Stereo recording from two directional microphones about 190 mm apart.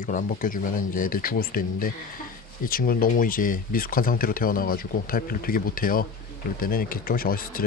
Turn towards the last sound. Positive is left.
turn(degrees=50)  # may be behind; listen again after turning